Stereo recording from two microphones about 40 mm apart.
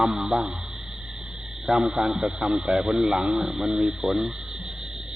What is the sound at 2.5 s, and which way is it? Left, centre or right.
Speech, centre.